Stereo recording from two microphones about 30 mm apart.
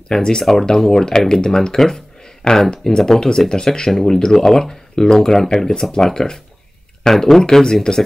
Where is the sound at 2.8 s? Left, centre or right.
Left.